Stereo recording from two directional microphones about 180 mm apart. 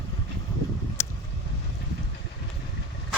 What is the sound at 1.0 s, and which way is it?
Vehicle, 15° left (ahead or behind).